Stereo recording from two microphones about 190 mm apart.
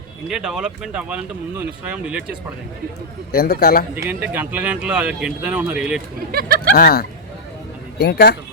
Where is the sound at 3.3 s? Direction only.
55° left (ahead or behind).